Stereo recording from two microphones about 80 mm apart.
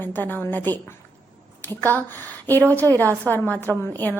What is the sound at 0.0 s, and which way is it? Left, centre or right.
A woman's voice, left.